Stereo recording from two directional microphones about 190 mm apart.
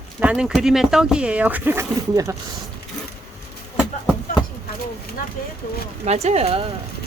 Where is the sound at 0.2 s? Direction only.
5° right (ahead or behind).